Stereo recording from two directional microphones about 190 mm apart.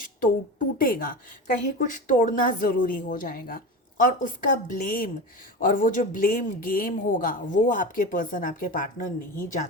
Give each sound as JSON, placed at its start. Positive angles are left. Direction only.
{"t": 0.8, "sound": "speech", "side_deg": 50}